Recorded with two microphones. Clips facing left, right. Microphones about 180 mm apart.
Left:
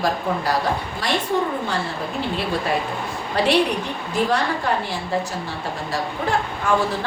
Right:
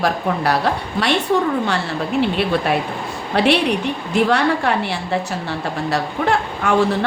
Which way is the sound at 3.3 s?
65° right (ahead or behind).